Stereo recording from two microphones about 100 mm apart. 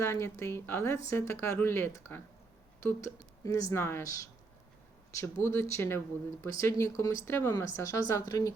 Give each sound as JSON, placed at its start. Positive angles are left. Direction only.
{"t": 0.0, "sound": "speech", "side_deg": 30}
{"t": 5.1, "sound": "speech", "side_deg": 25}